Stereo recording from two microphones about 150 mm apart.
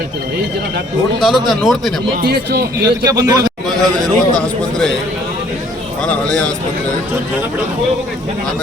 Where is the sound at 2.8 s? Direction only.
25° right (ahead or behind).